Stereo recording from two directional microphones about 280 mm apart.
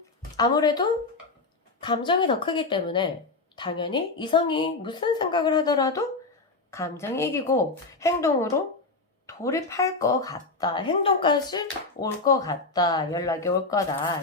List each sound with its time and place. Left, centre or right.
0.3 s speech: centre